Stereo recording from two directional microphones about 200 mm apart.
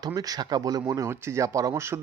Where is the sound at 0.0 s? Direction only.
20° right (ahead or behind).